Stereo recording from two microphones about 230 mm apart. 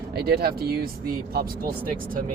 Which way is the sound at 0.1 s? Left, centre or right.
Right.